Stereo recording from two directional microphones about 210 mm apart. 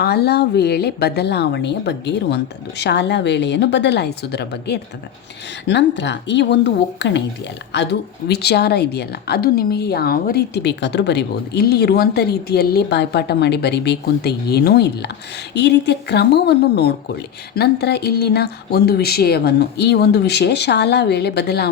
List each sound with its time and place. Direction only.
0.0 s a woman's voice: 50° left (ahead or behind)